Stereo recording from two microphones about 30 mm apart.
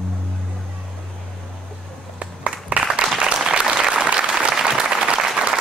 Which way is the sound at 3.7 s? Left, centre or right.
Right.